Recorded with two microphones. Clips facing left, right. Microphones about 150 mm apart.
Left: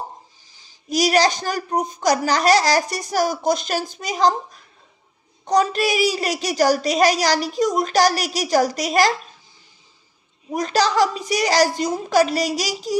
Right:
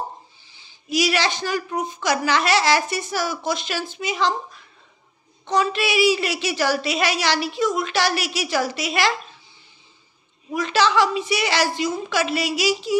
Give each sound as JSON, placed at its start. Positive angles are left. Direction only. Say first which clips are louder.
{"t": 0.5, "sound": "speech", "louder": "left 1 dB", "side_deg": 40}
{"t": 10.5, "sound": "speech", "louder": "even", "side_deg": 40}